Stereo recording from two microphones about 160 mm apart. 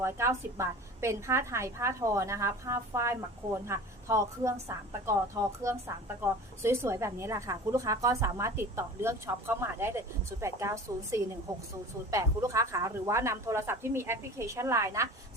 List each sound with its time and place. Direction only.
0.0 s a woman's voice: 15° right (ahead or behind)